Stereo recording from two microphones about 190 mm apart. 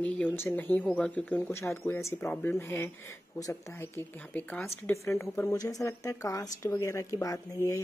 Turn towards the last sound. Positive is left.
turn(degrees=20)  # may be behind; listen again after turning